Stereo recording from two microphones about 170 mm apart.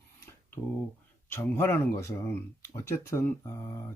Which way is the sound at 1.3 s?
15° left (ahead or behind).